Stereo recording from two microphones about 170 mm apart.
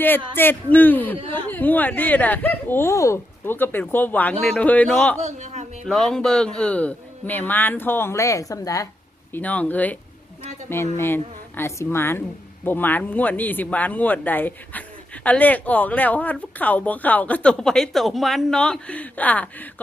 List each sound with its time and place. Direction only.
0.3 s speech: 10° left (ahead or behind)
5.2 s speech: 40° right (ahead or behind)
5.8 s speech: 5° left (ahead or behind); by 8.9 s 20° left (ahead or behind)
9.3 s speech: 10° left (ahead or behind)